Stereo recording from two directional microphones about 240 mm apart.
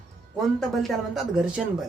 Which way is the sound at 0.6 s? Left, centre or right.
Centre.